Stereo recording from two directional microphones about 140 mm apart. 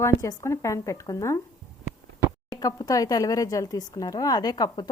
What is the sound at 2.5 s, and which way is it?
Speech, 25° left (ahead or behind).